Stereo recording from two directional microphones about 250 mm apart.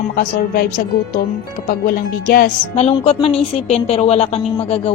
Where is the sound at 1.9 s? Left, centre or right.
Left.